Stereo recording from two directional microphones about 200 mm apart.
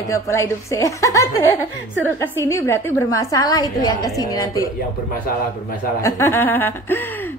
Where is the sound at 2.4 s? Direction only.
15° left (ahead or behind).